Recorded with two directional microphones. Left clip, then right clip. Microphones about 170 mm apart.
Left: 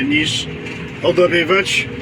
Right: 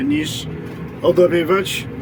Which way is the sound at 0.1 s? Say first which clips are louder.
Left 5 dB; 25° right (ahead or behind).